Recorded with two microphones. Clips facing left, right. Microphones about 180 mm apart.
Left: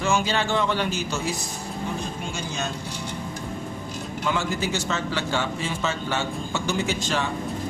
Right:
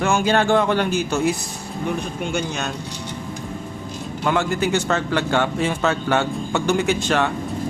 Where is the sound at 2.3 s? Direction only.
65° right (ahead or behind).